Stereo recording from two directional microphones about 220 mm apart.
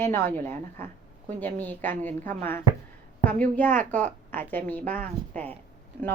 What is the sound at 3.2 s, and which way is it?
A woman's voice, 5° left (ahead or behind).